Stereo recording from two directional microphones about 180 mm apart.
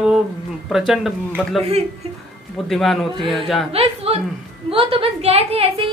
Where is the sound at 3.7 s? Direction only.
35° right (ahead or behind).